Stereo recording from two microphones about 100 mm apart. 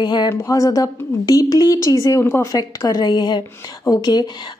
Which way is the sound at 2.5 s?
40° left (ahead or behind).